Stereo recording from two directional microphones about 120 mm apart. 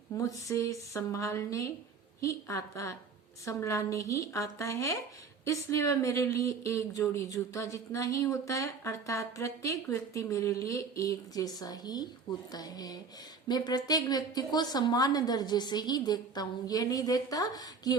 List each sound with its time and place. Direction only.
0.2 s a woman's voice: 25° left (ahead or behind)